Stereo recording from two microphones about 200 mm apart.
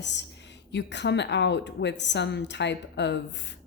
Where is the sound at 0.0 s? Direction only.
60° left (ahead or behind).